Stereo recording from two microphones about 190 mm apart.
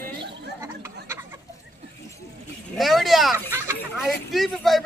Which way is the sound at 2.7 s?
Centre (ahead or behind).